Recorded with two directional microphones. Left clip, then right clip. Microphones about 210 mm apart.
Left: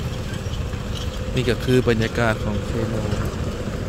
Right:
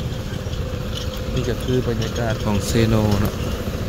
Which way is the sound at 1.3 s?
15° left (ahead or behind).